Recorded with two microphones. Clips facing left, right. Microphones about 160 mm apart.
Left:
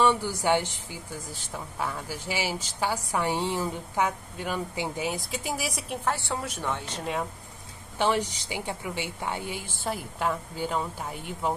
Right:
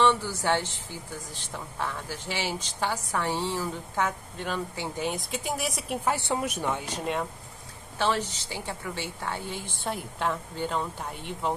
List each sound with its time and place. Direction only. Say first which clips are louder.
0.0 s a woman's voice: even; 15° left (ahead or behind)
6.0 s a woman's voice: right 2 dB; 20° right (ahead or behind)
8.0 s a woman's voice: left 2 dB; 15° left (ahead or behind)